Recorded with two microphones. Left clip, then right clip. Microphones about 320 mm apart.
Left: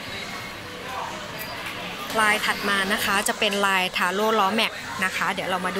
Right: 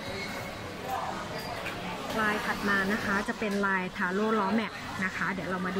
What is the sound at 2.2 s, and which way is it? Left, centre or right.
Speech, centre.